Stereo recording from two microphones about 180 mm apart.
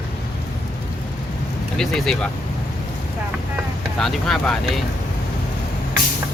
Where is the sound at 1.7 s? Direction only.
Centre (ahead or behind).